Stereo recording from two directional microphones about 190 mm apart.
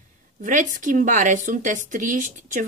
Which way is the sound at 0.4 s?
45° right (ahead or behind).